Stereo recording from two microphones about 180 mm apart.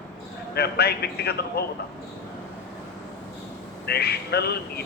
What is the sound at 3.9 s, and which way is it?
Speech, 65° left (ahead or behind).